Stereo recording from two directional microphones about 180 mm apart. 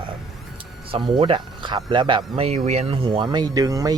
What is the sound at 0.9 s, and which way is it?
Speech, 25° right (ahead or behind).